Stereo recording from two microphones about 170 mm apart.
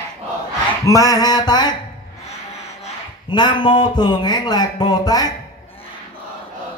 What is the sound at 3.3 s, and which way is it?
Speech, 25° left (ahead or behind).